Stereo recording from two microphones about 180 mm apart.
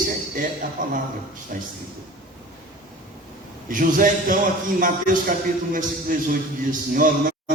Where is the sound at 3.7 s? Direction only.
50° right (ahead or behind).